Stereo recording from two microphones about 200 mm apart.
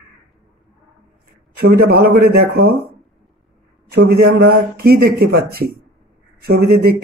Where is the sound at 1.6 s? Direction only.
50° right (ahead or behind).